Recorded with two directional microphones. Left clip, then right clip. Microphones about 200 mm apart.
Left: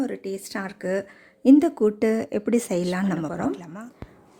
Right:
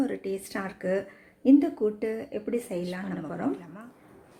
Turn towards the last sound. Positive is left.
turn(degrees=45)  # may be behind; listen again after turning